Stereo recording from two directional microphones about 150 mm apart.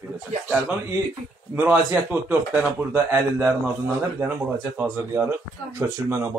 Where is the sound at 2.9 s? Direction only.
15° right (ahead or behind).